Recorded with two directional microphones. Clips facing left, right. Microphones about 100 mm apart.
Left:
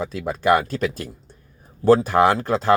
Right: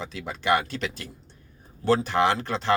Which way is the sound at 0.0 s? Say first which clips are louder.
Left 8 dB; 45° left (ahead or behind).